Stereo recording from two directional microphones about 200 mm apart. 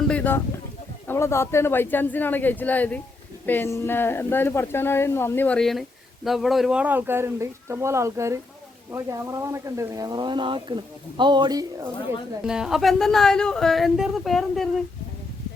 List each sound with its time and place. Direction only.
0.1 s a sound: 10° left (ahead or behind)
1.0 s a woman's voice: 10° left (ahead or behind); by 11.9 s 20° right (ahead or behind)
12.5 s speech: 5° right (ahead or behind)